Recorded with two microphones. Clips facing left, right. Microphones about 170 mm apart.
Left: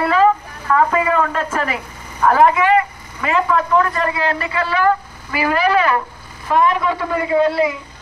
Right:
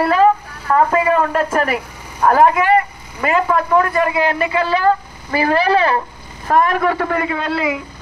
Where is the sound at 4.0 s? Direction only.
15° right (ahead or behind).